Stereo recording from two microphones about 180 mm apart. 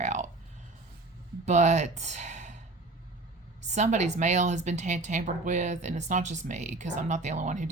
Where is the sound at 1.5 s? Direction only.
40° right (ahead or behind).